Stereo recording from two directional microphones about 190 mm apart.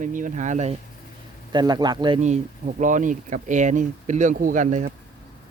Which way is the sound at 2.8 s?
40° right (ahead or behind).